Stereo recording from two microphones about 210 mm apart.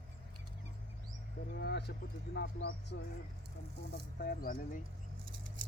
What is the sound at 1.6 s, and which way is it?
Speech, 50° left (ahead or behind).